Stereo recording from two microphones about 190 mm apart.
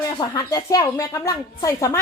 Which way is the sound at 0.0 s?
20° left (ahead or behind).